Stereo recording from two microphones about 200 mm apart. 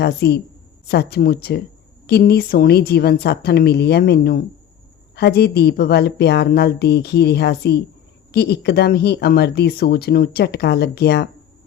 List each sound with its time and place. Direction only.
0.0 s speech: 55° left (ahead or behind)